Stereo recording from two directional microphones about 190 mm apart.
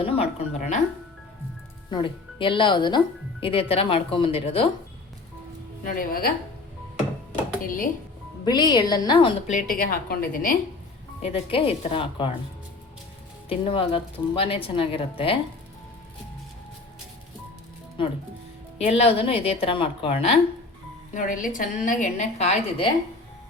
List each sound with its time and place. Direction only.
0.0 s a woman's voice: 30° left (ahead or behind)
1.9 s speech: 25° left (ahead or behind)
5.9 s speech: 50° left (ahead or behind)
7.6 s speech: 45° left (ahead or behind)
8.4 s speech: 25° left (ahead or behind)
10.1 s speech: 50° left (ahead or behind)
11.2 s speech: 30° left (ahead or behind)
13.5 s speech: 30° left (ahead or behind)
18.0 s a woman's voice: 25° left (ahead or behind)